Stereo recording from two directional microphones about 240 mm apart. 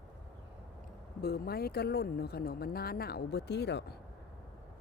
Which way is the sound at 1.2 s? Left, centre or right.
Left.